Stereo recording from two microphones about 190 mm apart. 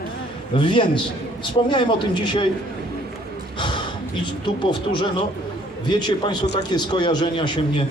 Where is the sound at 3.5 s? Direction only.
25° left (ahead or behind).